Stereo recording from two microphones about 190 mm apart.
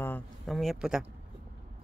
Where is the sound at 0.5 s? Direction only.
Centre (ahead or behind).